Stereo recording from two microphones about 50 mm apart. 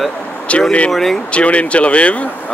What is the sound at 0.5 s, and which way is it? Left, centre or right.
Speech, left.